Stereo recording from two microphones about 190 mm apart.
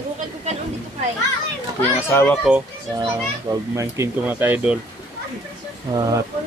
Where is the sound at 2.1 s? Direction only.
15° left (ahead or behind).